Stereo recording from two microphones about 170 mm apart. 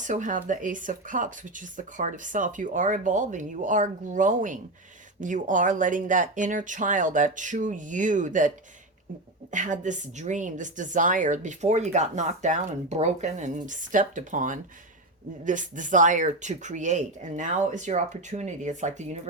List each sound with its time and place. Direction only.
0.0 s a woman's voice: 45° right (ahead or behind)